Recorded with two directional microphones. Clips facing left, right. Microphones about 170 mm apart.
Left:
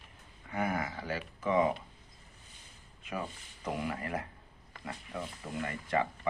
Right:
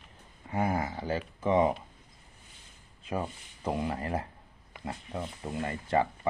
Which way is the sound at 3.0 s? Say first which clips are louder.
Right 5 dB; 30° right (ahead or behind).